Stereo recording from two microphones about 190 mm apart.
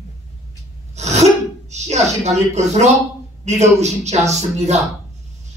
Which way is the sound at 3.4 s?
35° right (ahead or behind).